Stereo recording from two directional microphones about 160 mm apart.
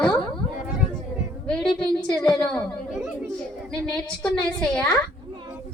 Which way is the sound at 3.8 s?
5° left (ahead or behind).